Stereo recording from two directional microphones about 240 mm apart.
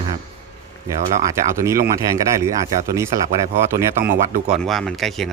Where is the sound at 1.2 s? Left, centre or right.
Centre.